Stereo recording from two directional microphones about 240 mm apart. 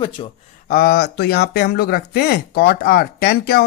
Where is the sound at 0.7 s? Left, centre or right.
Left.